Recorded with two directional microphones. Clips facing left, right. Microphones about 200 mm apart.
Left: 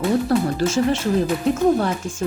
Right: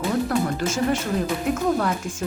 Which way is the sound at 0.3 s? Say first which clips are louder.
Left 4 dB; 30° left (ahead or behind).